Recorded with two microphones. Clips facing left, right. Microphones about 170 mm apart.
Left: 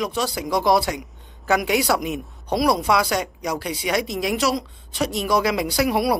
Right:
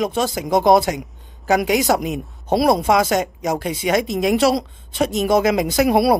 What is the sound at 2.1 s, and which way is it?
Speech, 25° right (ahead or behind).